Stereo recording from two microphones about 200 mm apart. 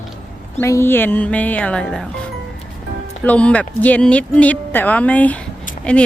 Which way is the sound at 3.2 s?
5° left (ahead or behind).